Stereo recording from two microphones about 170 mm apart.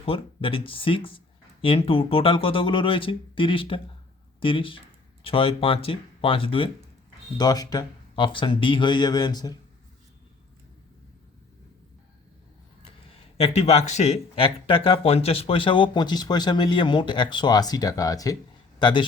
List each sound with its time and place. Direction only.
0.0 s speech: 35° left (ahead or behind)
12.8 s a man's voice: 35° left (ahead or behind)